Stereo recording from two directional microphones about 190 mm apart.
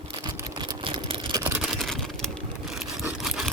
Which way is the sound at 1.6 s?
Centre (ahead or behind).